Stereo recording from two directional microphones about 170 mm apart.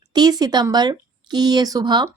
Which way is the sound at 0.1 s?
25° right (ahead or behind).